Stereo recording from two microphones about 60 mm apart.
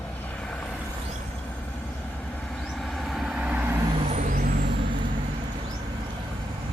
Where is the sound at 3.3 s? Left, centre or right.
Centre.